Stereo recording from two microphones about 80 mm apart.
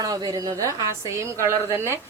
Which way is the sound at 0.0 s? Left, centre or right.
Right.